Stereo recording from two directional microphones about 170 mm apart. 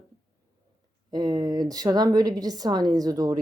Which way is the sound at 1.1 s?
25° right (ahead or behind).